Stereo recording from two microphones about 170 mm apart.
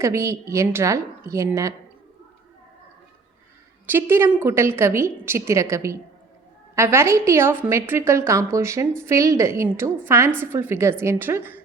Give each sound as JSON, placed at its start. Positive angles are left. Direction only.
{"t": 0.0, "sound": "a woman's voice", "side_deg": -15}
{"t": 3.8, "sound": "a woman's voice", "side_deg": -10}